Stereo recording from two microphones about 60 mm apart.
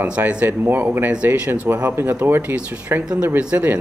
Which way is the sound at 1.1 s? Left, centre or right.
Right.